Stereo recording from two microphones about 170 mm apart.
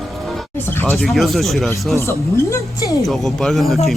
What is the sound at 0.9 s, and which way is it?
Speech, centre (ahead or behind).